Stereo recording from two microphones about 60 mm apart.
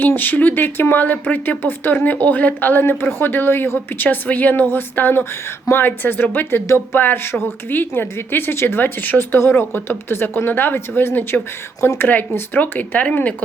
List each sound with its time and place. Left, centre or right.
0.0 s speech: left
12.0 s speech: left